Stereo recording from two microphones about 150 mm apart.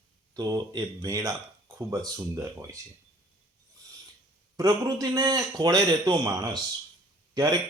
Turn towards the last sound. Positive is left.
turn(degrees=-25)  # may be behind; listen again after turning